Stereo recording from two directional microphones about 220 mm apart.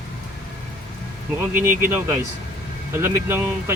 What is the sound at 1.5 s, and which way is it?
Speech, 10° right (ahead or behind).